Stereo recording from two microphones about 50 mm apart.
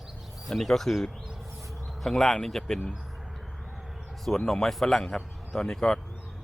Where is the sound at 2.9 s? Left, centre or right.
Centre.